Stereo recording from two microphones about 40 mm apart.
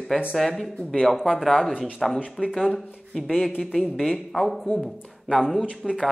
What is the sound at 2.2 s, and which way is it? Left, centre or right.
Speech, right.